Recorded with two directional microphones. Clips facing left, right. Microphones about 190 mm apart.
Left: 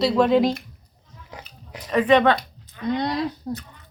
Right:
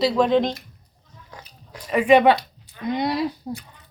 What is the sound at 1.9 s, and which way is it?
A woman's voice, 10° right (ahead or behind).